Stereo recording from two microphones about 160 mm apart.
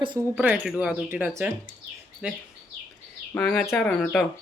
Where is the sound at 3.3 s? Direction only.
10° left (ahead or behind).